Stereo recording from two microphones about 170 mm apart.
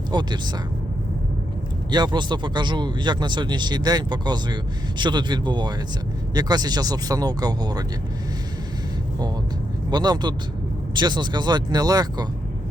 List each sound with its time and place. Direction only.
0.1 s speech: 25° right (ahead or behind)
1.9 s speech: 25° right (ahead or behind)
9.9 s speech: 25° right (ahead or behind)